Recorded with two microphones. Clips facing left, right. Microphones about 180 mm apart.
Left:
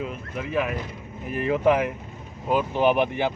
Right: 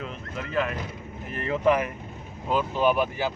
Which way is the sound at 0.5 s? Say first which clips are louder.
Left 1 dB; 10° left (ahead or behind).